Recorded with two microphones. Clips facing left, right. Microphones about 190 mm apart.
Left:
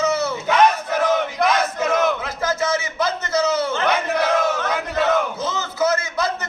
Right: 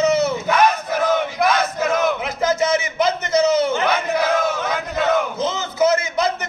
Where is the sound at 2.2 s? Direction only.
20° right (ahead or behind).